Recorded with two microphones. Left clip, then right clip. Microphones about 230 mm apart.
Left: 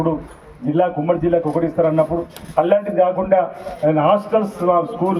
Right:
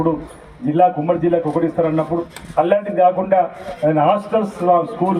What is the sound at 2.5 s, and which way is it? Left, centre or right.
A man's voice, right.